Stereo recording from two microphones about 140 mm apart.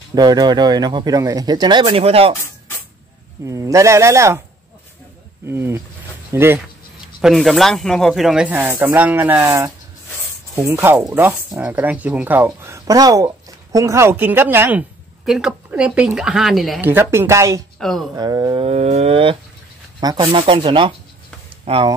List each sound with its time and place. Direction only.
0.1 s speech: 30° right (ahead or behind)
1.9 s a sound: 45° right (ahead or behind)
3.4 s speech: 25° right (ahead or behind)
5.5 s speech: 20° right (ahead or behind)
7.2 s speech: centre (ahead or behind)
16.8 s speech: 15° right (ahead or behind)
17.7 s speech: centre (ahead or behind)
18.1 s speech: 30° right (ahead or behind)
18.6 s a sound: 45° right (ahead or behind)
20.0 s speech: 30° right (ahead or behind)
20.2 s speech: 40° right (ahead or behind)
21.7 s a sound: 45° right (ahead or behind)